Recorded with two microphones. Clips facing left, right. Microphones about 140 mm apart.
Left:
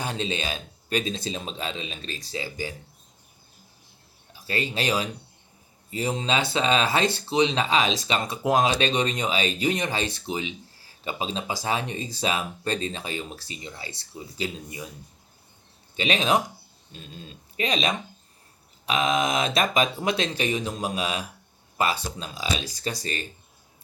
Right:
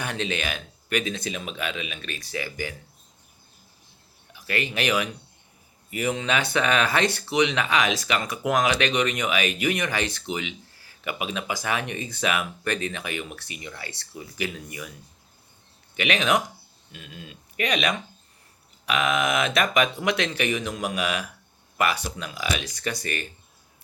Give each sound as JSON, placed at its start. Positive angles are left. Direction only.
{"t": 0.0, "sound": "speech", "side_deg": 25}
{"t": 4.3, "sound": "speech", "side_deg": 30}
{"t": 13.8, "sound": "speech", "side_deg": -65}
{"t": 14.1, "sound": "speech", "side_deg": 25}
{"t": 16.0, "sound": "speech", "side_deg": 30}